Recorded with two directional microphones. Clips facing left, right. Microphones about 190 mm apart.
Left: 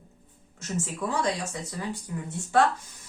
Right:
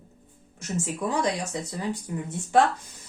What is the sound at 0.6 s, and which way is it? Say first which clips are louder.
Speech: right 2 dB; 15° right (ahead or behind).